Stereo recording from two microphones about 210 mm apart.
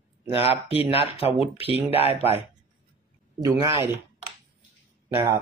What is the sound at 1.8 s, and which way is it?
Speech, 30° left (ahead or behind).